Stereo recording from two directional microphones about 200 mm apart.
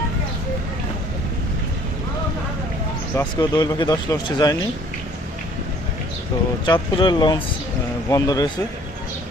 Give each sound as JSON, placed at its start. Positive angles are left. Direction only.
{"t": 3.2, "sound": "speech", "side_deg": 20}
{"t": 6.7, "sound": "speech", "side_deg": 25}